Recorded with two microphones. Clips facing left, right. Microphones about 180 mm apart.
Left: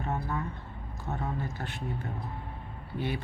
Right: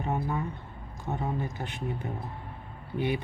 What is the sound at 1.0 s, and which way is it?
A woman's voice, 15° right (ahead or behind).